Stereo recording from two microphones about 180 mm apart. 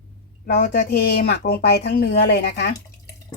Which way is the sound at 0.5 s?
55° left (ahead or behind).